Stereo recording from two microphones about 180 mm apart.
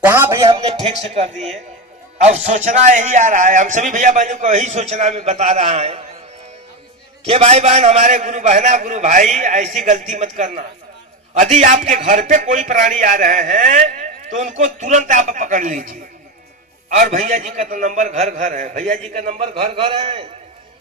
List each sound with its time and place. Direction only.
0.0 s a man's voice: 15° right (ahead or behind); by 6.0 s 35° right (ahead or behind)
7.3 s a man's voice: 35° right (ahead or behind)